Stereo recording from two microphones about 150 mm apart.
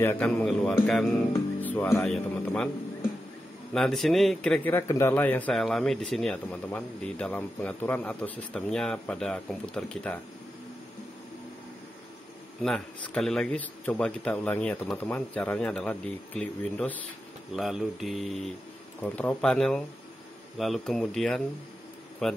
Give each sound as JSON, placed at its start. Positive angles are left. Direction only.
{"t": 0.0, "sound": "speech", "side_deg": 10}
{"t": 1.6, "sound": "speech", "side_deg": 15}
{"t": 3.7, "sound": "speech", "side_deg": 5}
{"t": 5.5, "sound": "speech", "side_deg": 0}
{"t": 12.6, "sound": "speech", "side_deg": 5}
{"t": 17.5, "sound": "speech", "side_deg": -5}